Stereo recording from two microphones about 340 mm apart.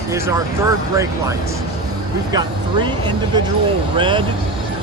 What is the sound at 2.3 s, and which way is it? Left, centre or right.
Speech, centre.